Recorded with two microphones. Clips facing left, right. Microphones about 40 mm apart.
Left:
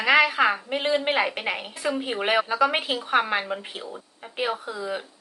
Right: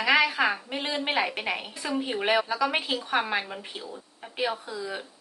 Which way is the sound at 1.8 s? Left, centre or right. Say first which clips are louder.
Left 3 dB; left.